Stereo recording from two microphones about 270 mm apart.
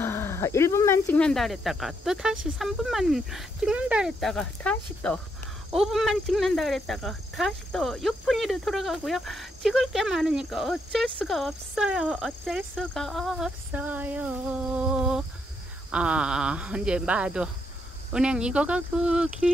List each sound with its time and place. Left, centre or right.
0.0 s speech: centre